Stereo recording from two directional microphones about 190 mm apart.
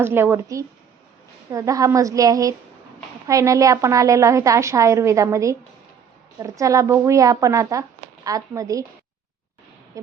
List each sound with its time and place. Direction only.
0.0 s speech: 10° right (ahead or behind)